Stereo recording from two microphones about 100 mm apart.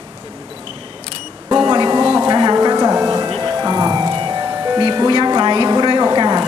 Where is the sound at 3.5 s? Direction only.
40° right (ahead or behind).